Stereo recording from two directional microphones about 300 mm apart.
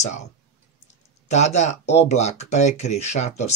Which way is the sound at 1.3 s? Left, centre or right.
Left.